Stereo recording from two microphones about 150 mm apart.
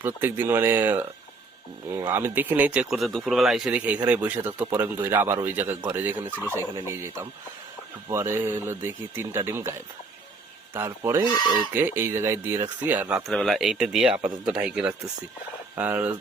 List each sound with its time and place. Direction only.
0.0 s speech: 15° right (ahead or behind)
10.8 s speech: 15° right (ahead or behind)